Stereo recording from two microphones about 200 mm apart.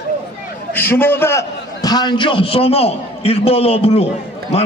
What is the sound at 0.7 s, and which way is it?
A man's voice, 10° left (ahead or behind).